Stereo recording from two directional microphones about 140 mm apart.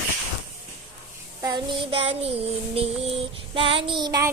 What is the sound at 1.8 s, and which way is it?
Child singing, 40° right (ahead or behind).